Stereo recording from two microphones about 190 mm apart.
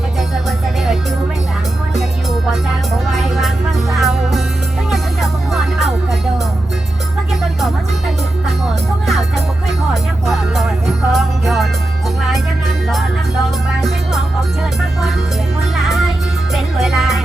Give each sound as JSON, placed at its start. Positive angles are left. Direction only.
{"t": 3.1, "sound": "music", "side_deg": 0}
{"t": 9.9, "sound": "music", "side_deg": 0}
{"t": 15.7, "sound": "music", "side_deg": 0}